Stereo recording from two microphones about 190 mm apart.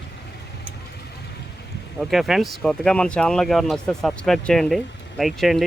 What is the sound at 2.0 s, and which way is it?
Speech, centre (ahead or behind).